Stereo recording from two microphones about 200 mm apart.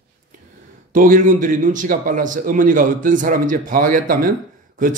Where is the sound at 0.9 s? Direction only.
40° right (ahead or behind).